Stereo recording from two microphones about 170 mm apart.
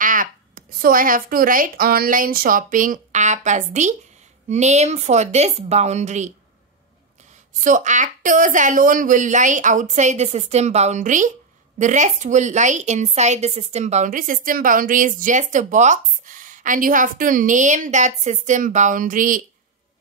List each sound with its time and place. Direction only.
0.0 s a woman's voice: 55° right (ahead or behind)
7.6 s a woman's voice: 45° right (ahead or behind)